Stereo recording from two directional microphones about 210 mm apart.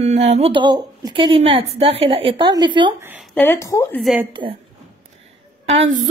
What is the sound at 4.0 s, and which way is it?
Speech, centre (ahead or behind).